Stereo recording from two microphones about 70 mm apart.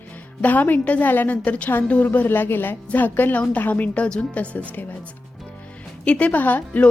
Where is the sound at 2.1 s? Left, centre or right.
Left.